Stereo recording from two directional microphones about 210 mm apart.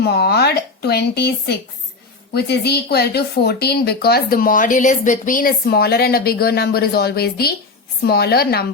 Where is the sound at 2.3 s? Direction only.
50° left (ahead or behind).